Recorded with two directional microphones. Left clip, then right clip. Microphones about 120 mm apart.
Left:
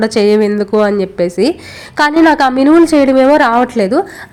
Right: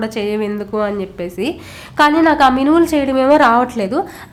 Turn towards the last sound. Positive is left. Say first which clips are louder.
# left 4 dB
turn(degrees=30)  # may be behind; listen again after turning